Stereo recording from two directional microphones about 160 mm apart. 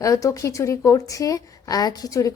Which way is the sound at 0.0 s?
20° left (ahead or behind).